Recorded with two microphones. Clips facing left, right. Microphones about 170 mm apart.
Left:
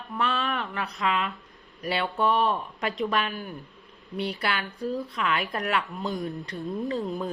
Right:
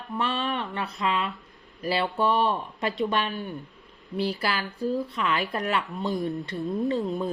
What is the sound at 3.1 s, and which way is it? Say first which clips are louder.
Speech: right 1 dB; 30° right (ahead or behind).